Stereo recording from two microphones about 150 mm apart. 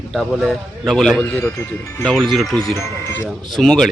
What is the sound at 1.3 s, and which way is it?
Speech, 15° left (ahead or behind).